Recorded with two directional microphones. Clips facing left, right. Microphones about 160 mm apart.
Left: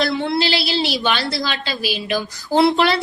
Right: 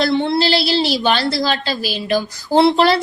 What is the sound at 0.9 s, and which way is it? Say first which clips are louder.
A woman's voice: right 4 dB; 40° right (ahead or behind).